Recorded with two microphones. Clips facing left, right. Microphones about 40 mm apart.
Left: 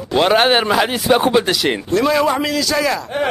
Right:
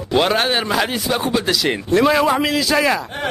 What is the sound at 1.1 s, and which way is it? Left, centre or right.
Speech, left.